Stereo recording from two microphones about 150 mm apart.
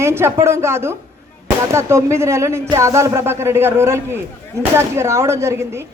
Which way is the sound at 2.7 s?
20° right (ahead or behind).